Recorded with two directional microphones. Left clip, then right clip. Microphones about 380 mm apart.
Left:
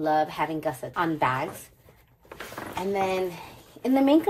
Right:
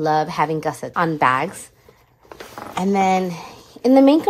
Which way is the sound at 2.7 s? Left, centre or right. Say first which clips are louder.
Right 9 dB; centre.